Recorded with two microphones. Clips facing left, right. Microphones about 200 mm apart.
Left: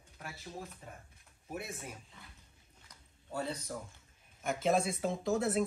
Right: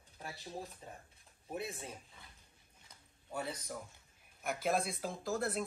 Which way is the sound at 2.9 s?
15° right (ahead or behind).